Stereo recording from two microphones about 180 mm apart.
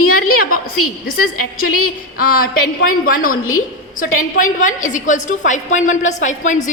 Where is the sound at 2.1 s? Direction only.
50° left (ahead or behind).